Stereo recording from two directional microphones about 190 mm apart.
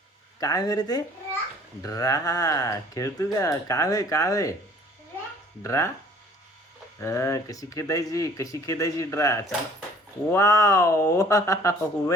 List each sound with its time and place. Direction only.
0.3 s speech: 20° left (ahead or behind)
5.6 s speech: 15° left (ahead or behind)
7.0 s speech: 15° left (ahead or behind)